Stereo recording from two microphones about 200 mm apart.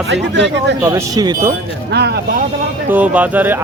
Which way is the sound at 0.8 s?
15° right (ahead or behind).